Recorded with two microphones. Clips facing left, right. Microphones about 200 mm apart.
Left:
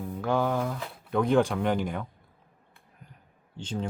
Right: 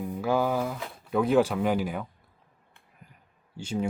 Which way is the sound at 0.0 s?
10° right (ahead or behind).